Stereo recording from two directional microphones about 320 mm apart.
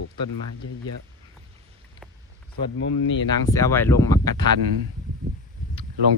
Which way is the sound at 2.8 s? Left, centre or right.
Left.